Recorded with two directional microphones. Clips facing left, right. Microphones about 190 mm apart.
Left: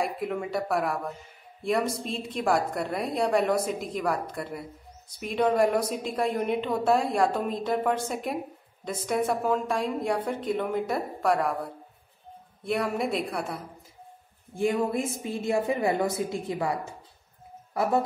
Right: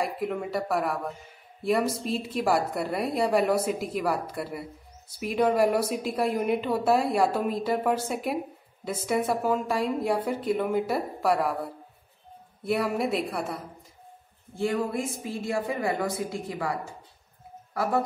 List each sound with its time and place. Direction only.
0.0 s a woman's voice: centre (ahead or behind)
14.5 s speech: 15° left (ahead or behind)